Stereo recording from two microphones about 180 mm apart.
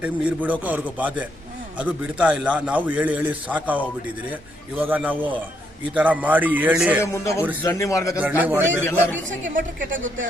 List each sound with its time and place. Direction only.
0.0 s a man's voice: 10° right (ahead or behind)
7.0 s speech: 15° left (ahead or behind)
8.4 s a man's voice: 10° right (ahead or behind)
8.9 s speech: 10° left (ahead or behind)